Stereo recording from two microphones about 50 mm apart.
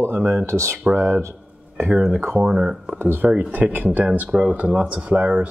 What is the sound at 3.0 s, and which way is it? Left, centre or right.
Speech, right.